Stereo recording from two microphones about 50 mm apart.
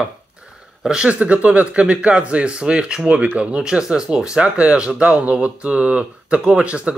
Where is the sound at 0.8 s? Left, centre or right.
Centre.